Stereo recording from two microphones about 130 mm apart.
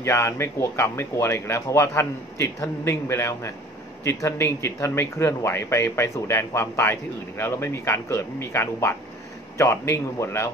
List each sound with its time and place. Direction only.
0.0 s speech: 20° left (ahead or behind)